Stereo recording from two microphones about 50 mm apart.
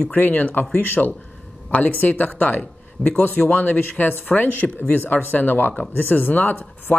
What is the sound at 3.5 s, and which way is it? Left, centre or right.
Speech, left.